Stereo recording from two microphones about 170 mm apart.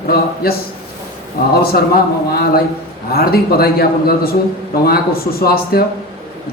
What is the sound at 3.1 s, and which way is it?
A man's voice, 65° left (ahead or behind).